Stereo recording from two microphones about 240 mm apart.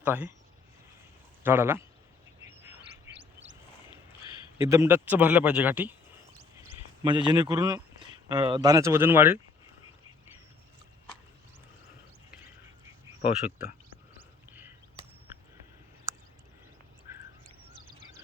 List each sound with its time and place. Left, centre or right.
0.0 s speech: centre
1.5 s speech: centre
2.5 s bird: centre
4.5 s speech: centre
7.0 s speech: centre